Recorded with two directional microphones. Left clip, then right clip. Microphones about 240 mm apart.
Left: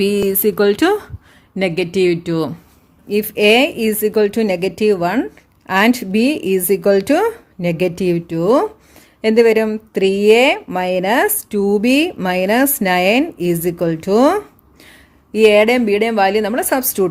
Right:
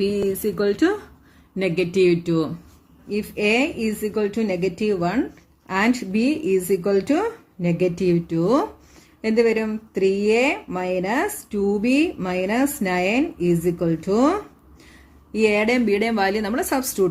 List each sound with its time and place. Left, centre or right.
0.0 s speech: left
1.5 s speech: left